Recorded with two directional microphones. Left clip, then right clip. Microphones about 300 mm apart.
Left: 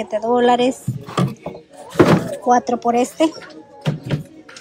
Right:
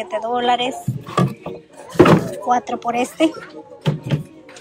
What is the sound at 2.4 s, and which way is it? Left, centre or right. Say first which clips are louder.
Speech: left 5 dB; centre.